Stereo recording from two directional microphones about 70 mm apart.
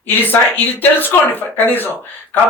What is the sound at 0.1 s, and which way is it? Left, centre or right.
Speech, left.